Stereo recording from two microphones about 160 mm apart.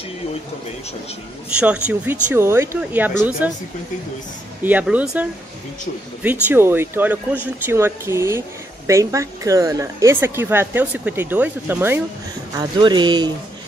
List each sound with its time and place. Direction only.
1.6 s a woman's voice: 10° right (ahead or behind)
4.6 s a woman's voice: 10° right (ahead or behind)
12.5 s speech: 25° right (ahead or behind)